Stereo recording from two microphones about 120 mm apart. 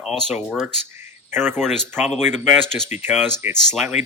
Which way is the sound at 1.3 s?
20° right (ahead or behind).